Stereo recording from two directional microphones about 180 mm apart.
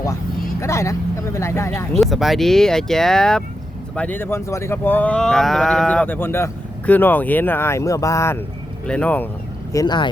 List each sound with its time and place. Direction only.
0.6 s speech: 15° left (ahead or behind)
1.9 s speech: centre (ahead or behind)
9.7 s speech: 25° left (ahead or behind)